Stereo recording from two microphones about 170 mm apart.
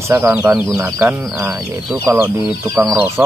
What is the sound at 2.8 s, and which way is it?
Speech, 5° right (ahead or behind).